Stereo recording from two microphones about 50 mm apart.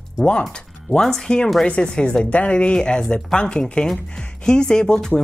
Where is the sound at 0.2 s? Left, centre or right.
Centre.